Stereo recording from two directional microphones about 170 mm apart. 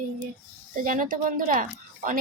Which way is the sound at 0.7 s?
50° right (ahead or behind).